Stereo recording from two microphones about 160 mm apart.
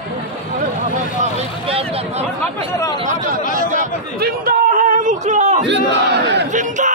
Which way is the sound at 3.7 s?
60° right (ahead or behind).